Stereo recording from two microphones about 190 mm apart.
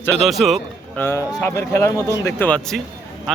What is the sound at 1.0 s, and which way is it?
Speech, 15° left (ahead or behind).